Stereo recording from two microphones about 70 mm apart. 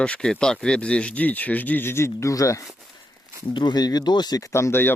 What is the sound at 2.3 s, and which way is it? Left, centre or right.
Speech, left.